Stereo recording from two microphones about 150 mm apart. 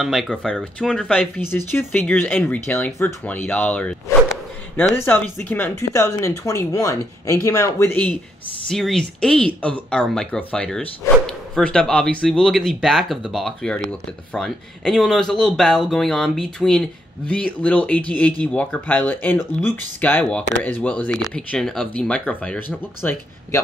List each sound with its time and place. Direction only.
0.0 s speech: centre (ahead or behind)
8.6 s speech: 5° left (ahead or behind)